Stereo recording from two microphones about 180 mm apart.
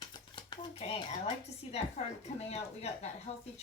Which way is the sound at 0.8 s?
35° left (ahead or behind).